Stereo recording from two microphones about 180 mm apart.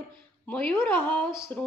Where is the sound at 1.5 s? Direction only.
10° left (ahead or behind).